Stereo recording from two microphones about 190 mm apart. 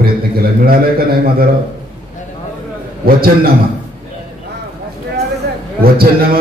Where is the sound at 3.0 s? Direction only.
50° right (ahead or behind).